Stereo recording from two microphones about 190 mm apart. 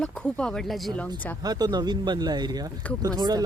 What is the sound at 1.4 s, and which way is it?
Speech, 20° right (ahead or behind).